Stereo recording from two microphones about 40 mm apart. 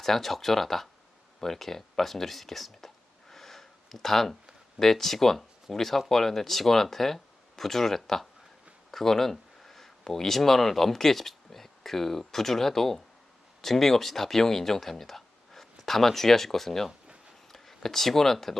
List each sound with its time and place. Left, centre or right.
0.0 s speech: centre
1.4 s a sound: centre
4.8 s speech: centre